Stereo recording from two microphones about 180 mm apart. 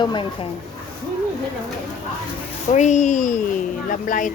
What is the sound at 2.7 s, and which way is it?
A woman's voice, 40° left (ahead or behind).